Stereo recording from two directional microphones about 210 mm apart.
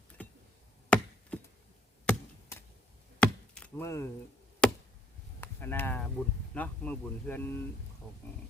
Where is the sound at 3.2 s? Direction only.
5° left (ahead or behind).